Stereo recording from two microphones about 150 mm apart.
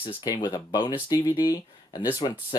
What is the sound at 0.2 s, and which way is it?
Speech, 25° left (ahead or behind).